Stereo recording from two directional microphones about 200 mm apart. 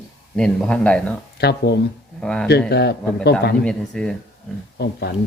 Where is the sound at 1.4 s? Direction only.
55° left (ahead or behind).